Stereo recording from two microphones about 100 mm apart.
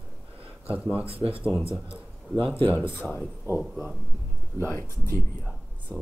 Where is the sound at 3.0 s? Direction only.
Centre (ahead or behind).